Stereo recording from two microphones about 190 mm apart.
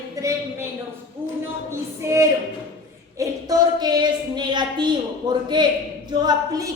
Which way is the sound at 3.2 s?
20° right (ahead or behind).